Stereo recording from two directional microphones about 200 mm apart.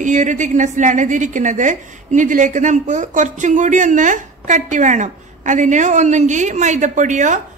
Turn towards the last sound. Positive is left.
turn(degrees=-35)  # may be behind; listen again after turning